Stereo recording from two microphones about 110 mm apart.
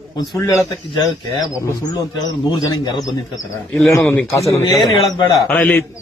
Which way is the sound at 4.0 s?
20° left (ahead or behind).